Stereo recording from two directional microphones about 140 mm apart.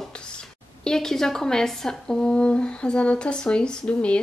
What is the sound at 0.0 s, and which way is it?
A woman's voice, 5° left (ahead or behind).